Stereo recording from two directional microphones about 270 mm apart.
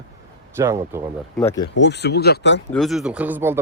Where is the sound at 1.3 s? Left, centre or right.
Centre.